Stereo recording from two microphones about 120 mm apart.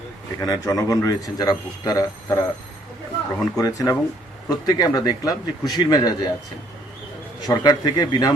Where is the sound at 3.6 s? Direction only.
30° left (ahead or behind).